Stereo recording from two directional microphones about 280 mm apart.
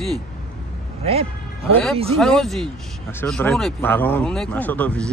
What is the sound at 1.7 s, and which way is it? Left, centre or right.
Speech, centre.